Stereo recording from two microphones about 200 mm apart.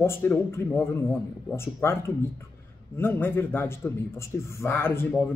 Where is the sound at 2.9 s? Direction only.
10° left (ahead or behind).